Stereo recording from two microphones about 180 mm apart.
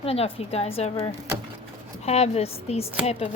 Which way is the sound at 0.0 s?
30° left (ahead or behind).